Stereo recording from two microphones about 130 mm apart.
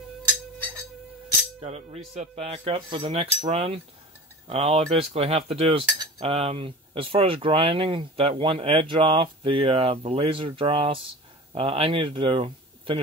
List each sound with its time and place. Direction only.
1.6 s cutlery: 50° right (ahead or behind)
11.5 s speech: 50° right (ahead or behind)